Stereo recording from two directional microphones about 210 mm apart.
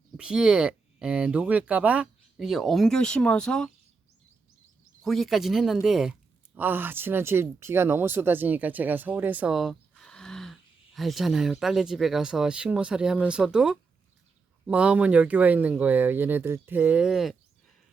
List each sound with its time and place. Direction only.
0.2 s speech: 5° right (ahead or behind)
5.0 s speech: centre (ahead or behind)